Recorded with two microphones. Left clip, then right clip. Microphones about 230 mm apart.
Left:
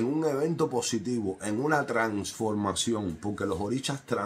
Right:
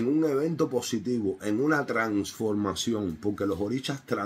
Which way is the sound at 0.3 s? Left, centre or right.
Centre.